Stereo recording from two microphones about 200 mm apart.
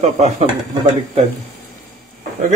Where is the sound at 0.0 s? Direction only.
35° right (ahead or behind).